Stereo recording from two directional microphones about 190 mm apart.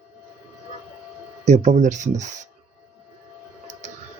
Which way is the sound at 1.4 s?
35° right (ahead or behind).